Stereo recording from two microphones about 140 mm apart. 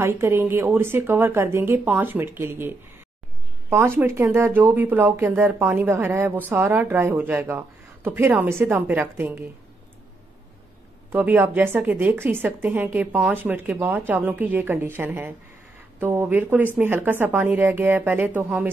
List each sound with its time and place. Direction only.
0.0 s a woman's voice: 15° right (ahead or behind)
3.7 s a woman's voice: 15° right (ahead or behind)
11.1 s a woman's voice: 15° right (ahead or behind)